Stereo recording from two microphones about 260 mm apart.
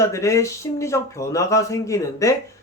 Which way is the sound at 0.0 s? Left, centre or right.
Centre.